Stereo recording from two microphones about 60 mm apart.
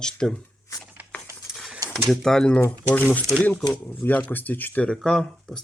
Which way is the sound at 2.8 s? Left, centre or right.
Left.